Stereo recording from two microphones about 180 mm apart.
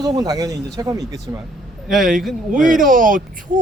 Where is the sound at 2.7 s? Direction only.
50° right (ahead or behind).